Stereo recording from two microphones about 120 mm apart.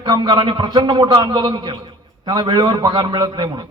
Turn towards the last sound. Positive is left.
turn(degrees=-40)  # may be behind; listen again after turning